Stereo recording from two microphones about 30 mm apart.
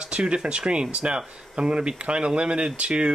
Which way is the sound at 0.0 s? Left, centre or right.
Right.